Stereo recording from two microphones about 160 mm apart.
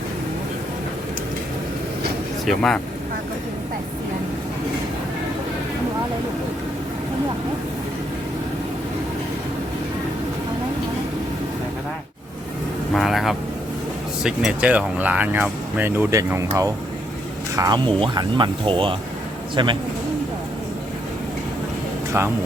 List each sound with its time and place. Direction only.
2.5 s speech: 5° left (ahead or behind)
12.9 s speech: centre (ahead or behind); by 19.7 s 30° right (ahead or behind)